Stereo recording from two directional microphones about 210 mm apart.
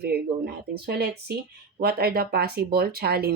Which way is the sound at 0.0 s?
45° right (ahead or behind).